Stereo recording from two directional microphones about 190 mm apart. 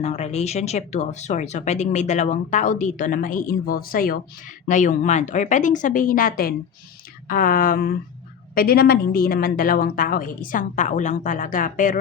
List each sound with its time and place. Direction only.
0.0 s a woman's voice: 35° left (ahead or behind)